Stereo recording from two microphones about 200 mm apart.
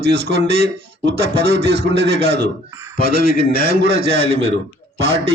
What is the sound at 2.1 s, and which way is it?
Speech, 30° right (ahead or behind).